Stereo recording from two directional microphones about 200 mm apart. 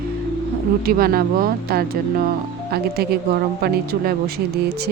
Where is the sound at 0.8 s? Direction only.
50° right (ahead or behind).